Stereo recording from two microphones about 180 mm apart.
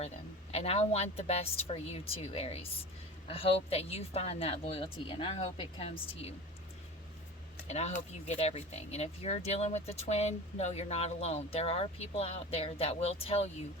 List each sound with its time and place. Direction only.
0.5 s speech: 35° left (ahead or behind)
7.7 s speech: 35° left (ahead or behind)